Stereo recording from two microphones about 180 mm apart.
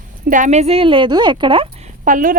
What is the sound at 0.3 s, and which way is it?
Speech, 45° right (ahead or behind).